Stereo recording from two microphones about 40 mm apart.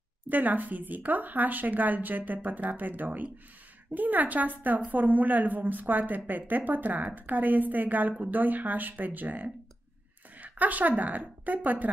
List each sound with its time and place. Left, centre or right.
0.3 s a woman's voice: right